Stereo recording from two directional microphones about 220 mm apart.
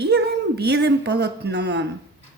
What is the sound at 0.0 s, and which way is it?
Speech, 50° right (ahead or behind).